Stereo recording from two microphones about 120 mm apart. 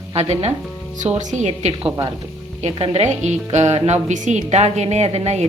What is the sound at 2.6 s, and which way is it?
A woman's voice, 55° right (ahead or behind).